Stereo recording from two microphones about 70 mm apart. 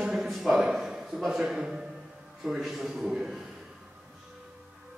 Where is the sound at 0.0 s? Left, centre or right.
Centre.